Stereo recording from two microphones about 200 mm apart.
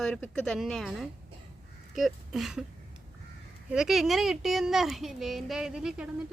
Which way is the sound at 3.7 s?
Centre (ahead or behind).